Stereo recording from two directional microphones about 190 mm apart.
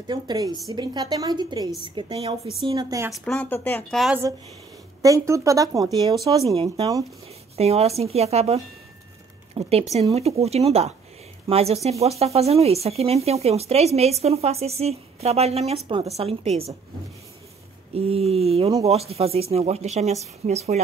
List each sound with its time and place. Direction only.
0.0 s a woman's voice: 20° right (ahead or behind)
3.1 s speech: 5° left (ahead or behind)
5.0 s a woman's voice: 15° right (ahead or behind)
7.5 s speech: 35° right (ahead or behind)
17.9 s speech: 30° right (ahead or behind)